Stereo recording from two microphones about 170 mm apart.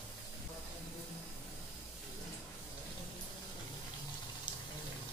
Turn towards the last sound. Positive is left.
turn(degrees=30)  # may be behind; listen again after turning